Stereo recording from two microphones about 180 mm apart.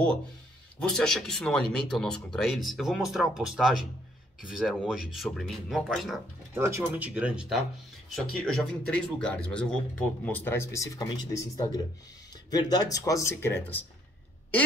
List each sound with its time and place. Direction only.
0.7 s speech: 5° left (ahead or behind)
6.5 s speech: 15° right (ahead or behind); by 13.8 s 10° left (ahead or behind)